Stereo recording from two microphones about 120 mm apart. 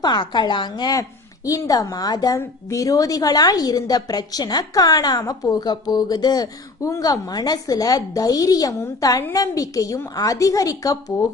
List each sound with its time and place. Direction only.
0.0 s a woman's voice: 35° left (ahead or behind)